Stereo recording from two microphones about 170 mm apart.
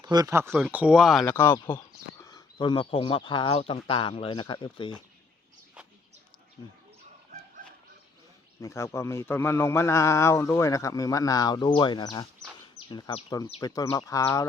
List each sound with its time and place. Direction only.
0.0 s speech: 25° right (ahead or behind); by 1.2 s centre (ahead or behind)
1.2 s a man's voice: 15° left (ahead or behind)
8.6 s a man's voice: 15° left (ahead or behind)